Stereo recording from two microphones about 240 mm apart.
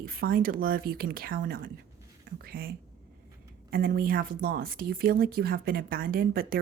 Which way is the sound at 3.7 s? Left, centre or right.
Right.